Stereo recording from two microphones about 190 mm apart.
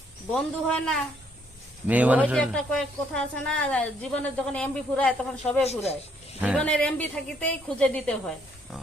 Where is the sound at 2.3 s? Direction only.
5° left (ahead or behind).